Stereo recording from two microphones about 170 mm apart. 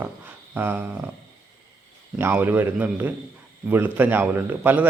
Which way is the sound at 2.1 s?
10° right (ahead or behind).